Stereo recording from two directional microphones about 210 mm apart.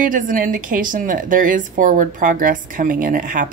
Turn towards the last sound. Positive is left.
turn(degrees=-40)  # may be behind; listen again after turning